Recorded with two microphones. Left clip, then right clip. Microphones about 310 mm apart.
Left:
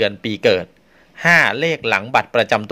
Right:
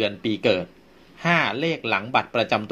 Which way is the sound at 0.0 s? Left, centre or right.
Left.